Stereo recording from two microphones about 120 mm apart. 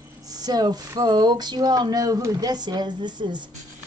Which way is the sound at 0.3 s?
35° right (ahead or behind).